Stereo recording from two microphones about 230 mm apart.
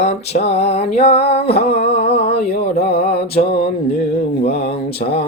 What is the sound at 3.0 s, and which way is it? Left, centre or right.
Music, left.